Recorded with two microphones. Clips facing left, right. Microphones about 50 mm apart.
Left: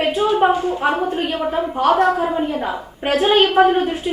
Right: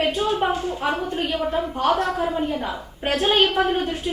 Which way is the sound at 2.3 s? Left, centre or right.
Centre.